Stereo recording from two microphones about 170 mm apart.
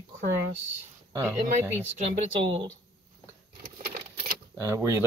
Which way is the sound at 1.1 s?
15° right (ahead or behind).